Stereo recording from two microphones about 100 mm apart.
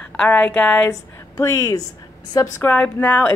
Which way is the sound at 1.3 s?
35° left (ahead or behind).